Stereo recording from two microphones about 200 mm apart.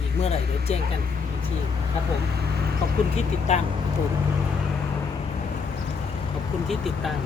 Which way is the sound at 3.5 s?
35° left (ahead or behind).